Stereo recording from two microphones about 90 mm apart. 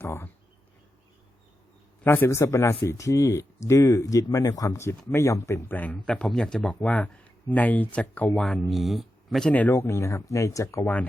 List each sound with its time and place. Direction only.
0.0 s speech: 25° left (ahead or behind)
2.0 s a man's voice: 25° left (ahead or behind)
5.7 s a man's voice: 20° left (ahead or behind)
6.1 s speech: 10° left (ahead or behind)
8.6 s speech: centre (ahead or behind)
9.5 s speech: 20° left (ahead or behind); by 10.8 s 35° left (ahead or behind)